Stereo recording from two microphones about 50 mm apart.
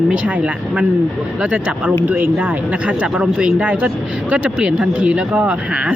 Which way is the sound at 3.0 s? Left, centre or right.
Centre.